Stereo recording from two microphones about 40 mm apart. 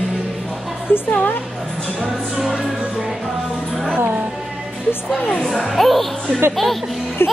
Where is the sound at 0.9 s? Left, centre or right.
Left.